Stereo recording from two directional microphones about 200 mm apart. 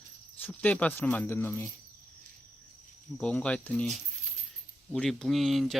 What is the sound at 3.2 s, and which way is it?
Speech, 5° left (ahead or behind).